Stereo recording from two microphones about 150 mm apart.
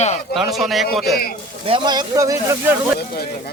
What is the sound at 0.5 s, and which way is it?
Speech, centre (ahead or behind).